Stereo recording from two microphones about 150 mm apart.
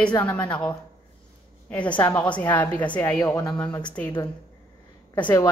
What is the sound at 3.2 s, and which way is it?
Speech, 25° left (ahead or behind).